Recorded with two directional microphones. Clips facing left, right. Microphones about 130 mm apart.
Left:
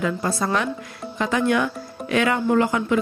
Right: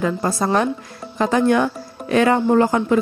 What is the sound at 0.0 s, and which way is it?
Speech, 40° right (ahead or behind).